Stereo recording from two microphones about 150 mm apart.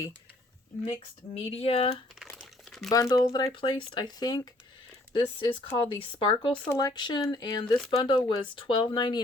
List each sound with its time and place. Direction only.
0.9 s speech: 40° left (ahead or behind)
2.3 s crumpling: centre (ahead or behind)
2.9 s speech: 25° left (ahead or behind)
6.7 s speech: 25° left (ahead or behind)